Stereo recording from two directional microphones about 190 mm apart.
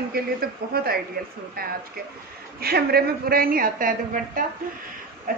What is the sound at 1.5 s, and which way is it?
A woman's voice, 50° right (ahead or behind).